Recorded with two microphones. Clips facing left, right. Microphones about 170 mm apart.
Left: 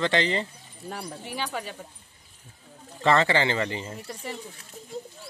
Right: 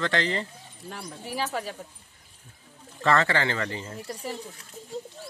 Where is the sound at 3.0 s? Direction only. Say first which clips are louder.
Left 2 dB; 20° left (ahead or behind).